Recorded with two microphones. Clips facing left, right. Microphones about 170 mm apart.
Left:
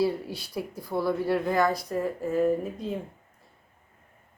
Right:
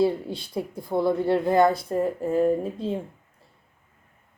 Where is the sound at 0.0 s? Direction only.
20° right (ahead or behind).